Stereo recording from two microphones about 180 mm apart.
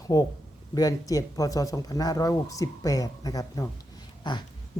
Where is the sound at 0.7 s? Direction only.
20° left (ahead or behind).